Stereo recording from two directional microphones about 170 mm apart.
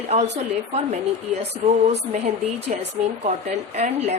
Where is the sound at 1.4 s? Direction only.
40° right (ahead or behind).